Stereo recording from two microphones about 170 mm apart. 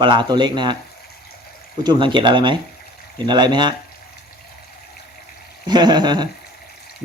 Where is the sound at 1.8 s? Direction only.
25° right (ahead or behind).